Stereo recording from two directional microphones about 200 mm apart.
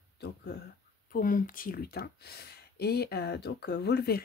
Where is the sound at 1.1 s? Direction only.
40° left (ahead or behind).